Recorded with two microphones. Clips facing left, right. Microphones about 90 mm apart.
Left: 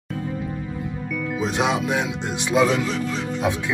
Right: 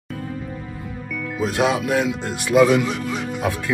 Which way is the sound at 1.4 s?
5° right (ahead or behind).